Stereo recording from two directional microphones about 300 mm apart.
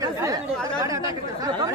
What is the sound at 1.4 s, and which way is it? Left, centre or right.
Speech, centre.